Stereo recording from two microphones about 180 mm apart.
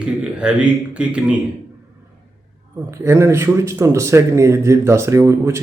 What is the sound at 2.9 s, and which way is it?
Speech, 15° right (ahead or behind).